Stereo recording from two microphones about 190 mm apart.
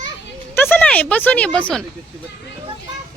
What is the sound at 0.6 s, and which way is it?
Speech, 10° left (ahead or behind).